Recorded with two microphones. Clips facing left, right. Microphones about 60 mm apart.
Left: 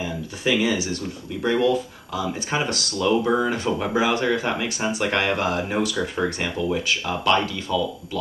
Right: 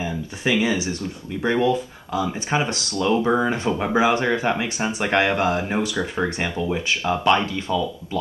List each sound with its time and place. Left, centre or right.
0.0 s speech: right